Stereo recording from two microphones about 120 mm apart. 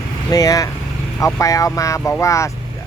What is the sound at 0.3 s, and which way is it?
Speech, 30° left (ahead or behind).